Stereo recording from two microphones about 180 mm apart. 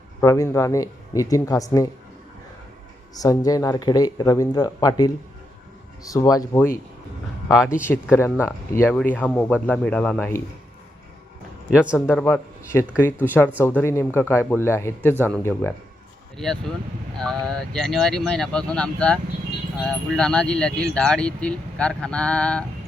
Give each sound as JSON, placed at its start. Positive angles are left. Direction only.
{"t": 0.2, "sound": "speech", "side_deg": 15}
{"t": 3.2, "sound": "speech", "side_deg": 20}
{"t": 11.7, "sound": "speech", "side_deg": -5}
{"t": 12.0, "sound": "a man's voice", "side_deg": 10}